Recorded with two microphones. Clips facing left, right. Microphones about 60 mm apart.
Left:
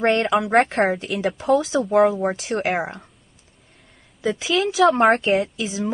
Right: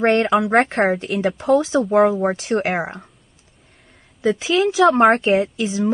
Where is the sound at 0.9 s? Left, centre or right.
Right.